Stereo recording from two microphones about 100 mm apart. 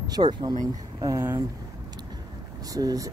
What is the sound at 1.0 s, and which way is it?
Speech, 30° right (ahead or behind).